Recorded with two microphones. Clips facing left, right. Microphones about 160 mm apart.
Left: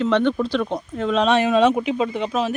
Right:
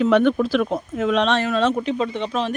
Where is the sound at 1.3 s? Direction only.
15° left (ahead or behind).